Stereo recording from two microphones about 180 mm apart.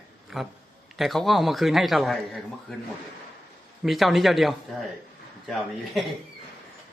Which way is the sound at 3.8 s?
Centre (ahead or behind).